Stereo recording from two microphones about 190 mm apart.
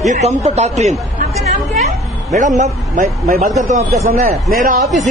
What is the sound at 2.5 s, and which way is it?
Speech, 40° right (ahead or behind).